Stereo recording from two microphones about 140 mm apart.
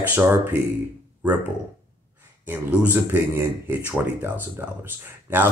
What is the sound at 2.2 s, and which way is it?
Speech, 15° right (ahead or behind).